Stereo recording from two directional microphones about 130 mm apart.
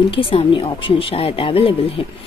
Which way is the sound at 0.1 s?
45° left (ahead or behind).